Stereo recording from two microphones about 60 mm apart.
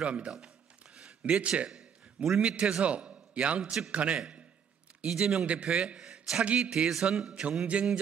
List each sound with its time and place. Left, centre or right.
0.0 s a man's voice: centre
0.9 s a sound: centre
1.7 s a man's voice: centre
7.7 s a man's voice: right